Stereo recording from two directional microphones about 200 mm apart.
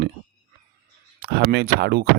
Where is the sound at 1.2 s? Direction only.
55° right (ahead or behind).